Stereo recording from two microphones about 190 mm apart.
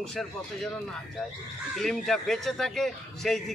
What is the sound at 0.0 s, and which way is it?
Speech, centre (ahead or behind).